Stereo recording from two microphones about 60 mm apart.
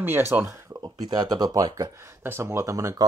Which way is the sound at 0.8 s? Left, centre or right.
Right.